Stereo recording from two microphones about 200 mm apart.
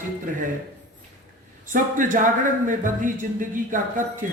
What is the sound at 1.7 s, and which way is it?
Speech, 40° right (ahead or behind).